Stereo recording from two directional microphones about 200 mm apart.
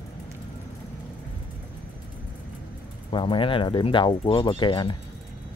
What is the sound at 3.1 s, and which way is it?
Speech, 25° left (ahead or behind).